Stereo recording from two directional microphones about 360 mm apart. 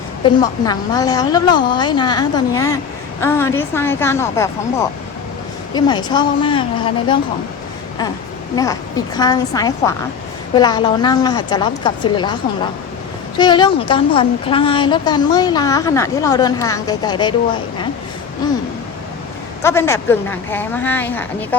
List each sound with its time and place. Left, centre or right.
0.6 s a woman's voice: centre
8.5 s a woman's voice: centre
19.6 s speech: centre